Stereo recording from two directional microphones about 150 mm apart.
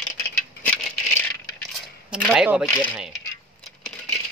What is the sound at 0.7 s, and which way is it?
Coin, 10° left (ahead or behind).